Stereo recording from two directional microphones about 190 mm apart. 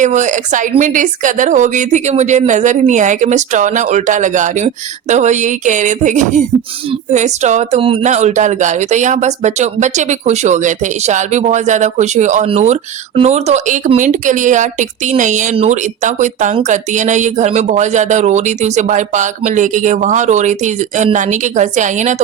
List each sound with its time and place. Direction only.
0.0 s speech: 40° right (ahead or behind)